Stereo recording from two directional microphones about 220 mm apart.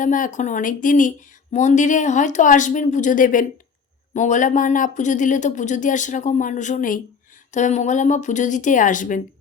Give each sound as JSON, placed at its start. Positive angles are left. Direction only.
{"t": 0.0, "sound": "speech", "side_deg": 35}